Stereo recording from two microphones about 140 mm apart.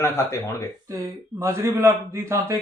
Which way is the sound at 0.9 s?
20° right (ahead or behind).